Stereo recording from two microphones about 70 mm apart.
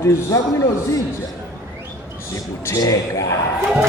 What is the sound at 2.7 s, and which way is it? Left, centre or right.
Speech, left.